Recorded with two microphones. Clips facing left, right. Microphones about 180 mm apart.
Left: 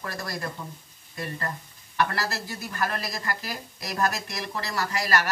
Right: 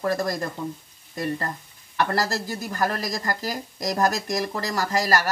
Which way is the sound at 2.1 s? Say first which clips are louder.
Right 6 dB; 40° right (ahead or behind).